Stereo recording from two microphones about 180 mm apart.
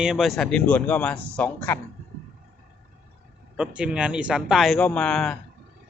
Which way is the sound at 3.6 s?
5° right (ahead or behind).